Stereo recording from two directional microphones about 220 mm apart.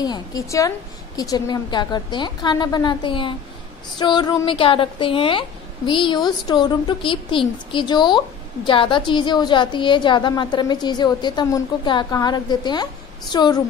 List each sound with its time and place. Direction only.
0.0 s a woman's voice: 15° left (ahead or behind)